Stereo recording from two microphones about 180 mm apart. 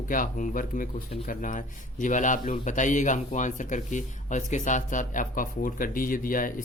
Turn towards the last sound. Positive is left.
turn(degrees=50)  # may be behind; listen again after turning